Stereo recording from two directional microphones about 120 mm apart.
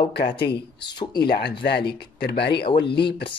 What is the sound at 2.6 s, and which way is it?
Speech, 45° left (ahead or behind).